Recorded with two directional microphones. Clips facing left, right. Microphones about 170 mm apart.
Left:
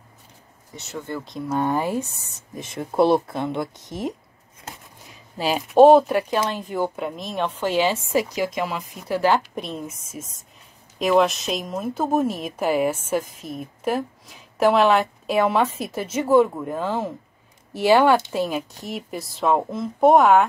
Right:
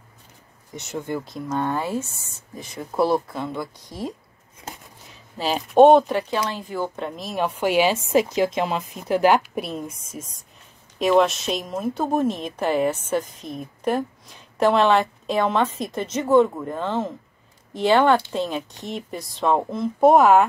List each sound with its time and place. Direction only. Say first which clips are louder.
0.7 s a woman's voice: right 3 dB; 15° right (ahead or behind)
1.5 s speech: left 2 dB; 10° left (ahead or behind)
5.4 s speech: even; 5° left (ahead or behind)
7.0 s a woman's voice: even; centre (ahead or behind)